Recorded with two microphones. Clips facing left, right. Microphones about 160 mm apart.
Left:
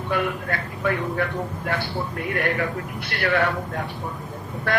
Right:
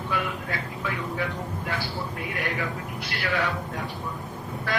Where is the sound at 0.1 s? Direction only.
55° left (ahead or behind).